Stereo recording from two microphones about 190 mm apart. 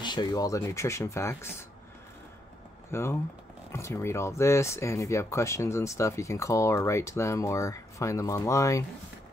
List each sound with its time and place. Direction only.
0.0 s speech: 25° left (ahead or behind)
2.9 s speech: 15° left (ahead or behind)